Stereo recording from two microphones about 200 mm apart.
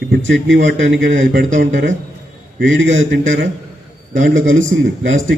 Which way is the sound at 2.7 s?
70° right (ahead or behind).